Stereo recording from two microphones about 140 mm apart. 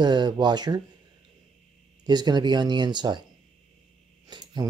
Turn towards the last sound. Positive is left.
turn(degrees=-30)  # may be behind; listen again after turning